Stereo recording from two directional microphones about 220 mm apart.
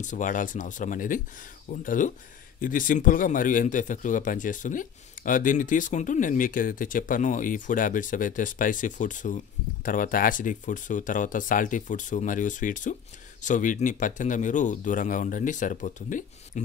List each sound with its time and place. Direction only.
0.0 s speech: 35° left (ahead or behind)